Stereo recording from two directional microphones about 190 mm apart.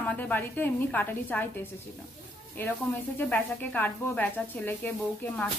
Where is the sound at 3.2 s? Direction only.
10° left (ahead or behind).